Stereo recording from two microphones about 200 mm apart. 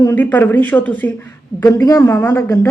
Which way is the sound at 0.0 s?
10° left (ahead or behind).